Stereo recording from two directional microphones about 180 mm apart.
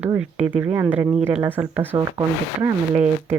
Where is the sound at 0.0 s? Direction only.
10° right (ahead or behind).